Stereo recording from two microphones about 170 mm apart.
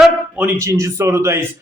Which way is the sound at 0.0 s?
5° right (ahead or behind).